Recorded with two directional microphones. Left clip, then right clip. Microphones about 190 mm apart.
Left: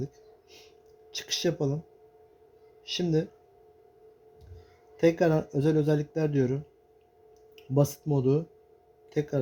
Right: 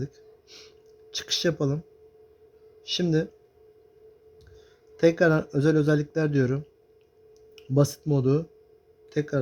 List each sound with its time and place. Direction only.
1.1 s a man's voice: 30° right (ahead or behind)
2.8 s a man's voice: 30° right (ahead or behind)
4.9 s a man's voice: 30° right (ahead or behind)